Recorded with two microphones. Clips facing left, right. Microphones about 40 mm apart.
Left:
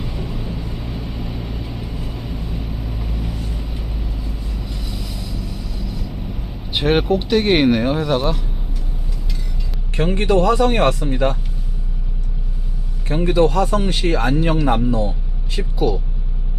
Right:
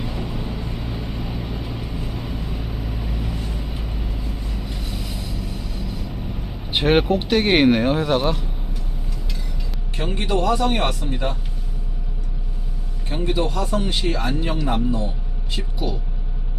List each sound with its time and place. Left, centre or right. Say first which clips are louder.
0.0 s vehicle: even; centre
7.2 s speech: left 1 dB; centre
9.9 s speech: left 6 dB; left
13.3 s speech: left 9 dB; left
13.7 s speech: left 4 dB; left
14.8 s a man's voice: left 4 dB; left